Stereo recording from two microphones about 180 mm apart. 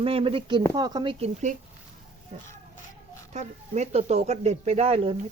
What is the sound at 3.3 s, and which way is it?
Speech, 40° right (ahead or behind).